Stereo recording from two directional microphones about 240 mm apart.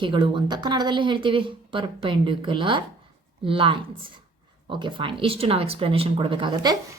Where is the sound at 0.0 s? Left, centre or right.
Centre.